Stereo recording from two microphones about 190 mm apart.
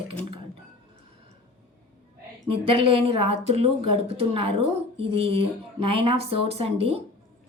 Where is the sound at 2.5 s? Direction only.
30° right (ahead or behind).